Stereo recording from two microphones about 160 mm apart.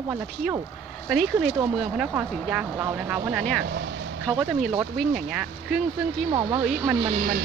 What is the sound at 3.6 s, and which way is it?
Speech, 90° right.